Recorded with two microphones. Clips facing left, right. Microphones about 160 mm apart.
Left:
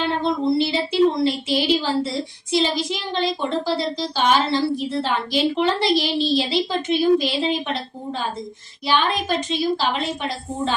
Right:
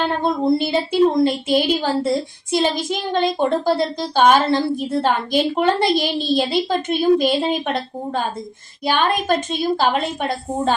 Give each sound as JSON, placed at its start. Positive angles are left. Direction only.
{"t": 0.0, "sound": "speech", "side_deg": -50}